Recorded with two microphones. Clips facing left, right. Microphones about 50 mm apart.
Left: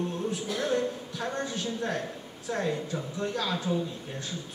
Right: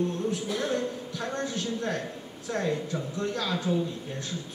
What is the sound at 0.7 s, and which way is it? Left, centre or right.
A man's voice, centre.